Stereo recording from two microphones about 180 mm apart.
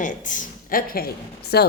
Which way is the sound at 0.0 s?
45° left (ahead or behind).